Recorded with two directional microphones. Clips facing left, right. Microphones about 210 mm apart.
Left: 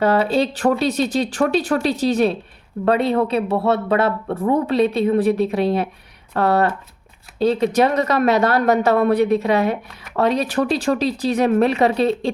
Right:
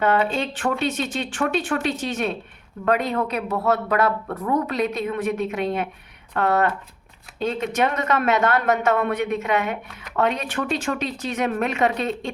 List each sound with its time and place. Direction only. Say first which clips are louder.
0.0 s speech: left 4 dB; 35° left (ahead or behind)